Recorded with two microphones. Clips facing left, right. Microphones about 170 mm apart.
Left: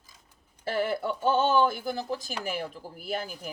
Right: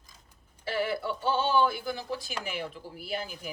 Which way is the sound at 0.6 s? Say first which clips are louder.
Left 2 dB; 45° left (ahead or behind).